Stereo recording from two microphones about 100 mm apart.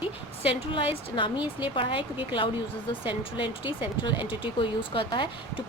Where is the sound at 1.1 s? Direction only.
55° left (ahead or behind).